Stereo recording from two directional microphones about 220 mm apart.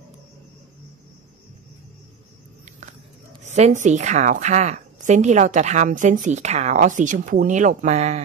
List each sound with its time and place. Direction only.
3.4 s a woman's voice: 30° right (ahead or behind)